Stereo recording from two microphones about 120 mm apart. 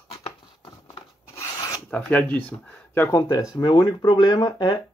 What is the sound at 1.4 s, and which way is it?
Filing, 30° left (ahead or behind).